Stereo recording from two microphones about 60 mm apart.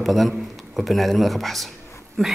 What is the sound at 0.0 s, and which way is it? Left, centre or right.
A man's voice, centre.